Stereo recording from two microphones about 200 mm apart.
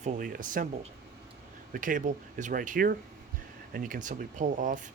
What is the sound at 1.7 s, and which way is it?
Speech, 40° right (ahead or behind).